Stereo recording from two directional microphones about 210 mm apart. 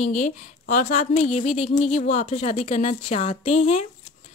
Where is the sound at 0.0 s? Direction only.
35° left (ahead or behind).